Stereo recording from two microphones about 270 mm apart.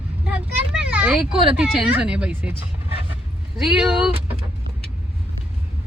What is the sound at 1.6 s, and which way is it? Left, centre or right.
Speech, centre.